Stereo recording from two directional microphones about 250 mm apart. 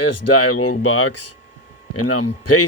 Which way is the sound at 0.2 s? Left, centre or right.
Left.